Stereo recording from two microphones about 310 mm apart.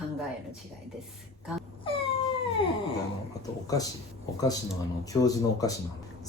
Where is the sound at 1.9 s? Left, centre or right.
Centre.